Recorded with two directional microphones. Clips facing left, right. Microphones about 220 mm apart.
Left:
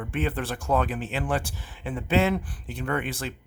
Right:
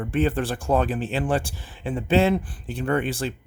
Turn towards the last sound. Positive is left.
turn(degrees=-30)  # may be behind; listen again after turning